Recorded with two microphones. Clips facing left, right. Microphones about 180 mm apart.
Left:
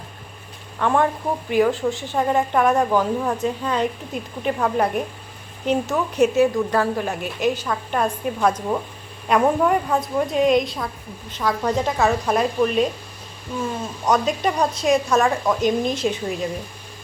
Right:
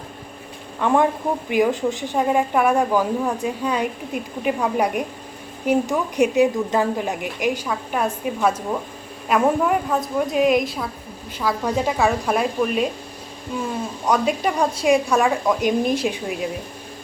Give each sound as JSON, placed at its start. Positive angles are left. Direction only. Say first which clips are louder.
{"t": 0.8, "sound": "a woman's voice", "louder": "right 1 dB", "side_deg": -15}
{"t": 14.0, "sound": "speech", "louder": "even", "side_deg": -5}